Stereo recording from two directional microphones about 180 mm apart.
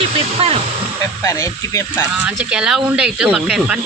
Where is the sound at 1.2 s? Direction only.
15° left (ahead or behind).